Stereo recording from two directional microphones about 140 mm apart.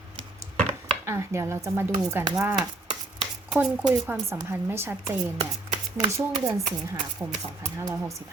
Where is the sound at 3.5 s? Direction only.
15° right (ahead or behind).